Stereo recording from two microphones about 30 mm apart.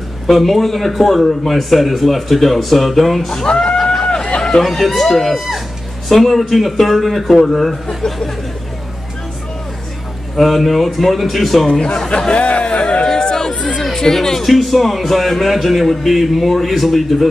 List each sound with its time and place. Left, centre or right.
0.3 s a man's voice: centre
3.4 s speech: left
3.7 s run: centre
4.4 s a sound: left
4.6 s a man's voice: centre
10.3 s a man's voice: centre
12.3 s a sound: left
12.6 s a sound: left
13.8 s chatter: centre
14.4 s a man's voice: centre